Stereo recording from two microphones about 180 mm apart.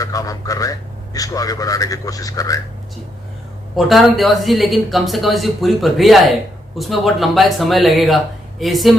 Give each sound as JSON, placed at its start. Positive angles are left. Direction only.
{"t": 0.0, "sound": "a man's voice", "side_deg": 20}
{"t": 3.8, "sound": "speech", "side_deg": 0}